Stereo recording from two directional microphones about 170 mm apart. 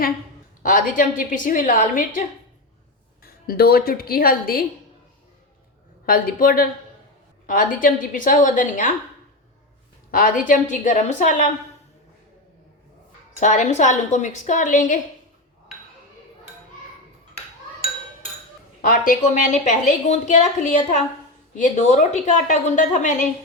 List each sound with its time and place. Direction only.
0.6 s a woman's voice: 50° left (ahead or behind)
3.2 s a woman's voice: 60° left (ahead or behind)
6.1 s a woman's voice: 55° left (ahead or behind)
10.1 s a woman's voice: 55° left (ahead or behind)
13.4 s a woman's voice: 45° left (ahead or behind)
18.8 s a woman's voice: 55° left (ahead or behind)